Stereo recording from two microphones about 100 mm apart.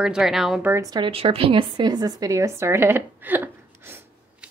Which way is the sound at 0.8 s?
40° right (ahead or behind).